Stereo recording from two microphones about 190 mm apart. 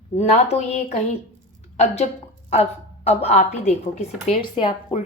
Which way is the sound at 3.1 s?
35° left (ahead or behind).